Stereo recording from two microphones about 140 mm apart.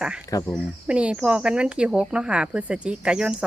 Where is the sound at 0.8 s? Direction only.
10° right (ahead or behind).